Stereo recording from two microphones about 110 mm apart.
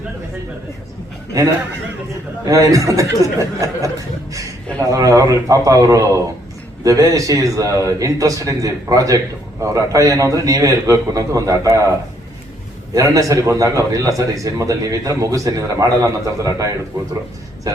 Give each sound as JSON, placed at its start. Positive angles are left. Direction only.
{"t": 2.4, "sound": "a man's voice", "side_deg": -30}